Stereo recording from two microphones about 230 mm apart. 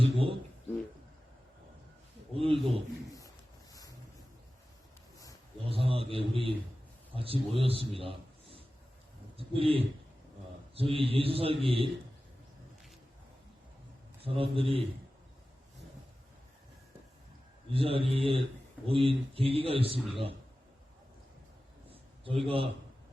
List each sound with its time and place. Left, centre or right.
0.0 s speech: right
2.3 s a man's voice: right
3.7 s vehicle: centre
5.6 s a man's voice: right
14.2 s a man's voice: right
17.7 s a man's voice: right
19.9 s a man's voice: centre
21.8 s a sound: right